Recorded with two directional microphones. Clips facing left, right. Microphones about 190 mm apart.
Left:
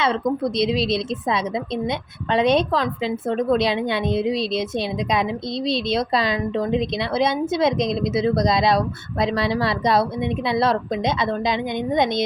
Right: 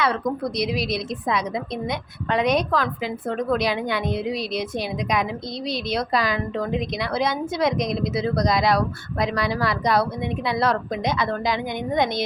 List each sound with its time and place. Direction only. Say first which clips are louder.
0.0 s a woman's voice: left 2 dB; 25° left (ahead or behind)